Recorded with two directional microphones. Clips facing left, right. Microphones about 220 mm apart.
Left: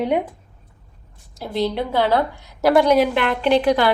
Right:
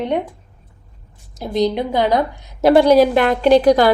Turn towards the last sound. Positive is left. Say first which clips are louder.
# right 5 dB
turn(degrees=-40)  # may be behind; listen again after turning